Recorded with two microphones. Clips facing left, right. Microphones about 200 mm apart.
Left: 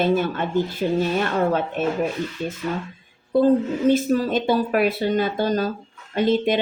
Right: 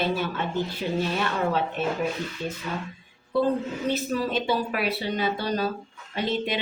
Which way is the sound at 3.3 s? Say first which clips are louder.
Left 7 dB; 45° left (ahead or behind).